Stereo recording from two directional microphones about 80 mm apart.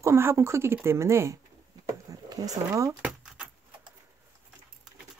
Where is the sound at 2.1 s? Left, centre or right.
Right.